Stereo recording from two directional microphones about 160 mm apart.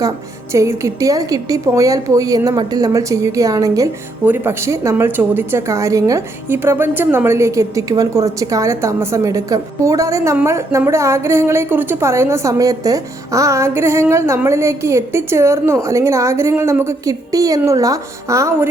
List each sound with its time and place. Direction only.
0.5 s a woman's voice: 20° right (ahead or behind)